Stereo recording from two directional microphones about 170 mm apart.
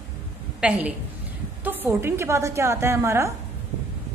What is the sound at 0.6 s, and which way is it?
A woman's voice, 10° right (ahead or behind).